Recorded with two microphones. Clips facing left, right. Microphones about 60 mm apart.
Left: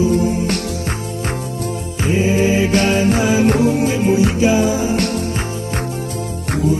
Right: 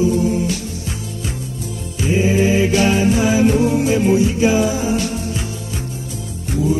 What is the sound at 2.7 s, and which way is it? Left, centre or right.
Music, left.